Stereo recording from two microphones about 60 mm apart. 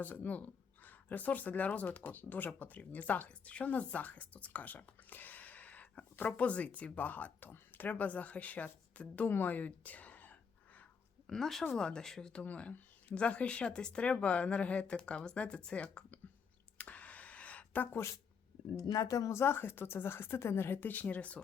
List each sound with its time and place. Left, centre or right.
0.0 s speech: left
11.3 s speech: centre
12.5 s speech: left
16.7 s a sound: left
18.8 s a woman's voice: left
19.4 s speech: left